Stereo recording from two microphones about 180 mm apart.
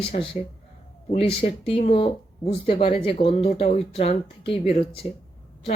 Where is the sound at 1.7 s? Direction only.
30° left (ahead or behind).